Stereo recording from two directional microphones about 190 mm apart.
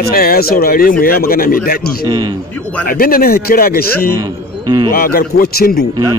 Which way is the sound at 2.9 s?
50° left (ahead or behind).